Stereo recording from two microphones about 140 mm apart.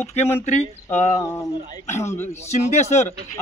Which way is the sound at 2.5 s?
55° left (ahead or behind).